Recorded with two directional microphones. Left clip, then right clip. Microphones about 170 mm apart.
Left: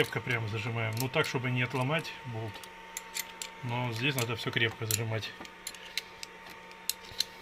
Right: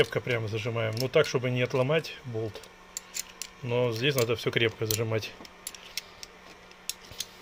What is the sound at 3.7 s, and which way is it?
Speech, 70° right (ahead or behind).